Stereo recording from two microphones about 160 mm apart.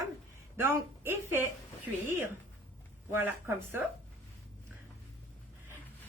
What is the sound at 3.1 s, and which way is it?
Speech, 15° right (ahead or behind).